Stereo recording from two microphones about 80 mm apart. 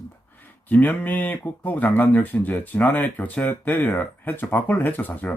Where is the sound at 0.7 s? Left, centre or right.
Left.